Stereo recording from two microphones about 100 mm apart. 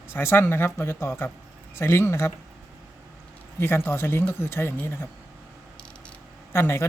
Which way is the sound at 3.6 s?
20° left (ahead or behind).